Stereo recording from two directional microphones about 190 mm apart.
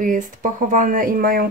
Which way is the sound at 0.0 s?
45° right (ahead or behind).